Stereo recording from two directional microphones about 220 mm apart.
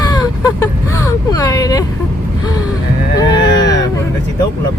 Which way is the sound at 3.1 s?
20° left (ahead or behind).